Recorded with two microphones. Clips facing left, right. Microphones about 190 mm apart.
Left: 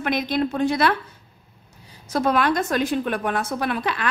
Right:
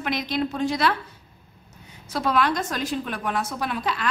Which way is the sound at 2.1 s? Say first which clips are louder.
Left 3 dB; 50° left (ahead or behind).